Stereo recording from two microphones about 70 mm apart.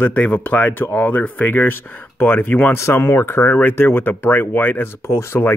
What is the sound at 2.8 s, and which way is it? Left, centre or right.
Speech, left.